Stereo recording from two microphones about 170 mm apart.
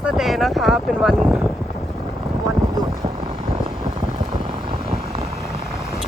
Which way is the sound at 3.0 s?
30° right (ahead or behind).